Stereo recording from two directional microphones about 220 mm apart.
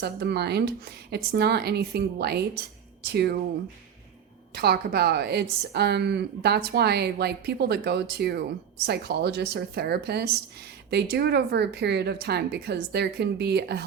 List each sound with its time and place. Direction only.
0.0 s speech: 45° right (ahead or behind)
4.5 s speech: 45° right (ahead or behind)